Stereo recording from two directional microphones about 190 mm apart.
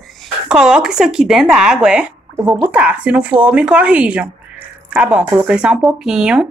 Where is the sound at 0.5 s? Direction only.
5° right (ahead or behind).